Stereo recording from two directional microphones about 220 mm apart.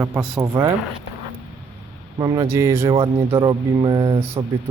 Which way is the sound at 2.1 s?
20° right (ahead or behind).